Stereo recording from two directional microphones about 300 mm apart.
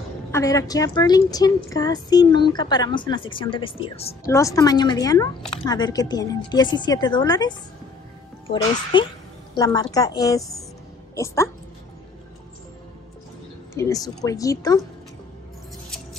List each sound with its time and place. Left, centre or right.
0.3 s a woman's voice: centre
8.9 s a woman's voice: centre
13.7 s a woman's voice: centre